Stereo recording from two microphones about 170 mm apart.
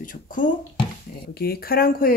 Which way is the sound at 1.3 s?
65° left (ahead or behind).